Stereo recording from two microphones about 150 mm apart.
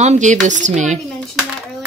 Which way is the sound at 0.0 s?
50° right (ahead or behind).